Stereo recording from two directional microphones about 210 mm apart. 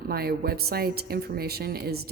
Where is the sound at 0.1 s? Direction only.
50° right (ahead or behind).